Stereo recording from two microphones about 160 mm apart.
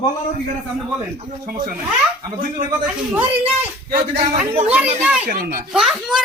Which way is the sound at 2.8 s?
5° right (ahead or behind).